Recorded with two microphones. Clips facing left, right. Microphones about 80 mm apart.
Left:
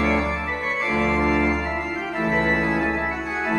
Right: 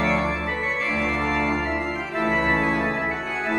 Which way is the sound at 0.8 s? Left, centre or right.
Centre.